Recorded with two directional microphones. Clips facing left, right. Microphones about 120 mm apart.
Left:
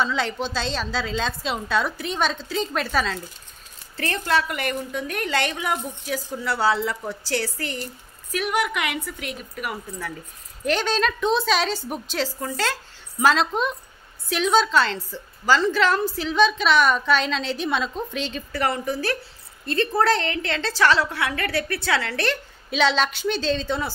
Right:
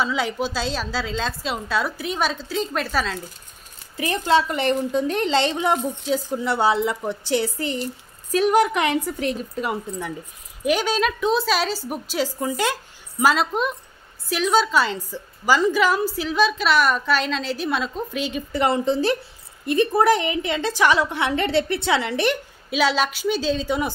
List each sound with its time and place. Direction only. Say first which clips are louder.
0.0 s a woman's voice: right 1 dB; 5° right (ahead or behind)
3.9 s a woman's voice: right 4 dB; 15° right (ahead or behind)
8.3 s a woman's voice: right 7 dB; 35° right (ahead or behind)
10.6 s a woman's voice: right 2 dB; 10° right (ahead or behind)
13.2 s a woman's voice: even; 5° right (ahead or behind)
18.5 s a woman's voice: right 5 dB; 20° right (ahead or behind)
22.7 s a woman's voice: even; 5° right (ahead or behind)